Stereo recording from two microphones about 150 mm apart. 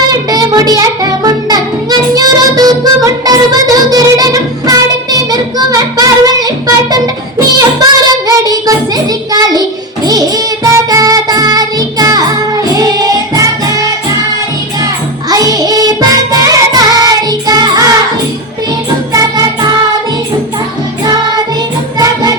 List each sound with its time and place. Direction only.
0.1 s music: 25° right (ahead or behind)
6.9 s child singing: 25° right (ahead or behind)
9.3 s a child's voice: 25° right (ahead or behind)
10.1 s music: 25° right (ahead or behind)
15.3 s music: 25° right (ahead or behind)
21.9 s music: 25° right (ahead or behind)